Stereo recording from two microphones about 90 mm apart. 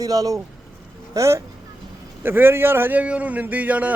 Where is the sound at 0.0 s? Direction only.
40° right (ahead or behind).